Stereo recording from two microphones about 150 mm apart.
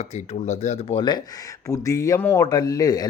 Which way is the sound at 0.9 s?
30° left (ahead or behind).